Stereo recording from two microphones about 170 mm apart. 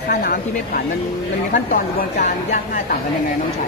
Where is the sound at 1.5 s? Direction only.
50° left (ahead or behind).